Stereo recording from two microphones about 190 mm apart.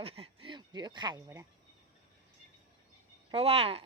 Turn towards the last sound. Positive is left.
turn(degrees=-30)  # may be behind; listen again after turning